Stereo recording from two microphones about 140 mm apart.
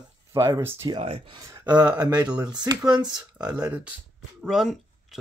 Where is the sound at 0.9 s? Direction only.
40° right (ahead or behind).